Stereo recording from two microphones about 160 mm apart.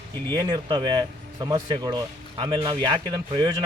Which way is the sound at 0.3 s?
25° right (ahead or behind).